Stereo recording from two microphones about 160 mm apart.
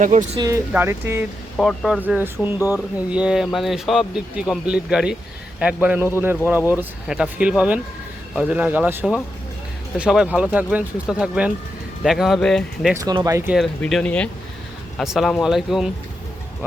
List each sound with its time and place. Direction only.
0.0 s speech: 50° right (ahead or behind)
0.3 s speech: 20° right (ahead or behind)
1.5 s speech: centre (ahead or behind)
2.0 s speech: 10° right (ahead or behind)
13.0 s speech: 25° right (ahead or behind)
13.8 s speech: 10° left (ahead or behind)